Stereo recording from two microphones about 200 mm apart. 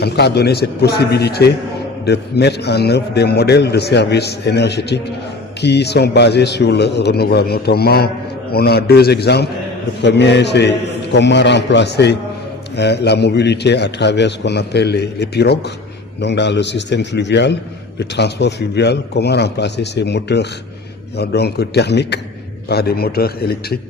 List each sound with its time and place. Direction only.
0.0 s a man's voice: 55° left (ahead or behind)